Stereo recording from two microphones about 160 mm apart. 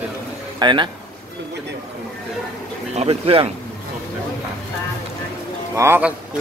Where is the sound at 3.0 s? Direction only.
35° right (ahead or behind).